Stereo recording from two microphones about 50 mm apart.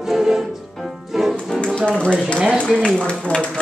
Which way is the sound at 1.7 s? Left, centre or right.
Centre.